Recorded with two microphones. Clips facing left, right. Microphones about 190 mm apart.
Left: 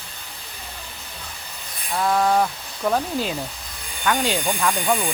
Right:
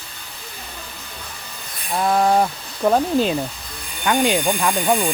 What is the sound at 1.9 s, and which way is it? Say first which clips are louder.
Speech: right 2 dB; 25° right (ahead or behind).